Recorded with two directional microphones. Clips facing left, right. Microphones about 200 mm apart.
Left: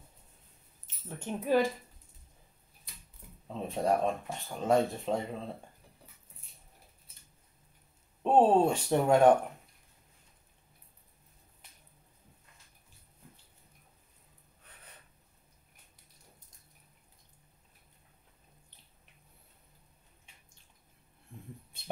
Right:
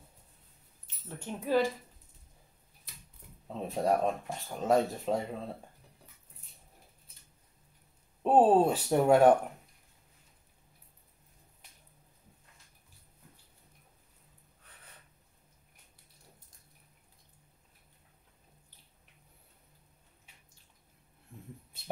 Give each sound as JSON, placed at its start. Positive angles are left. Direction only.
{"t": 1.0, "sound": "speech", "side_deg": 15}
{"t": 3.4, "sound": "speech", "side_deg": 0}
{"t": 8.2, "sound": "speech", "side_deg": -5}